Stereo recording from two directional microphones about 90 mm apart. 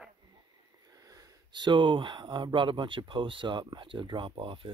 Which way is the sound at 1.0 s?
45° right (ahead or behind).